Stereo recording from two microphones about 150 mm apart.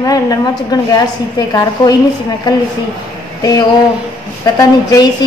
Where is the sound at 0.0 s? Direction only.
25° left (ahead or behind).